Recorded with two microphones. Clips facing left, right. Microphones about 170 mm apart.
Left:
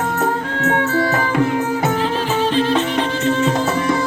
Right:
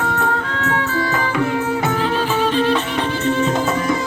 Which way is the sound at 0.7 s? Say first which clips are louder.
Left 3 dB; 50° left (ahead or behind).